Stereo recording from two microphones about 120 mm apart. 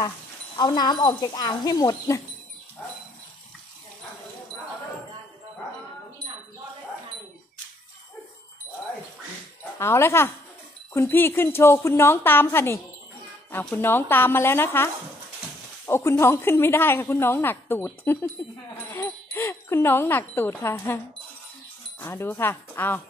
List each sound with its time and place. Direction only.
0.6 s speech: 35° left (ahead or behind)
9.8 s a woman's voice: 20° left (ahead or behind)
15.9 s a woman's voice: 25° left (ahead or behind)
18.9 s wind chime: 20° left (ahead or behind)
22.0 s a woman's voice: 20° left (ahead or behind)